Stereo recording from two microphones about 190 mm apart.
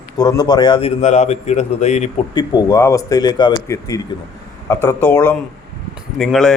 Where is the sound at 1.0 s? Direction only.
35° left (ahead or behind).